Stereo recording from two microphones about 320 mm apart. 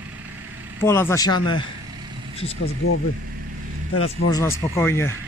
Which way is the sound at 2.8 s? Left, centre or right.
Left.